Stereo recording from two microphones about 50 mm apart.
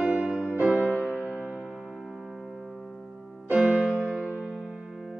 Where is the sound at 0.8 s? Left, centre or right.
Left.